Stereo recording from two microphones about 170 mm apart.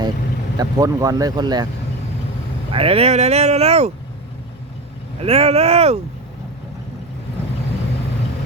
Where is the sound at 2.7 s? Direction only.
35° right (ahead or behind).